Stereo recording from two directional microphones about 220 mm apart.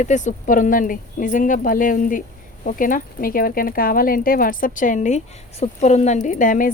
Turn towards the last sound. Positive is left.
turn(degrees=35)  # may be behind; listen again after turning